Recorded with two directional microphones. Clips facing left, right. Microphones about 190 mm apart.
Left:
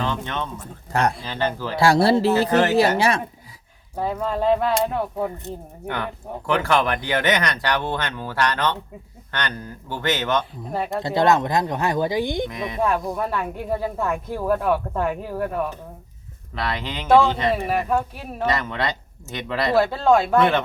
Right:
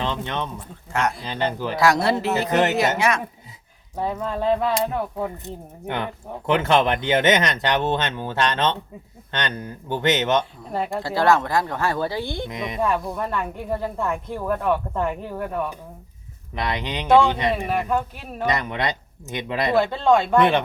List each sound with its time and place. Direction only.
0.0 s speech: 20° right (ahead or behind)
1.7 s speech: 30° left (ahead or behind)
2.5 s speech: 20° right (ahead or behind)
3.0 s speech: 30° left (ahead or behind)
4.0 s speech: 5° left (ahead or behind)
5.9 s speech: 20° right (ahead or behind)
10.7 s speech: centre (ahead or behind)
10.9 s speech: 20° left (ahead or behind)
12.5 s speech: 20° right (ahead or behind)
13.1 s speech: 5° left (ahead or behind)
16.6 s speech: 20° right (ahead or behind)
17.7 s speech: 5° left (ahead or behind)
18.4 s speech: 15° right (ahead or behind)
19.7 s speech: 5° left (ahead or behind)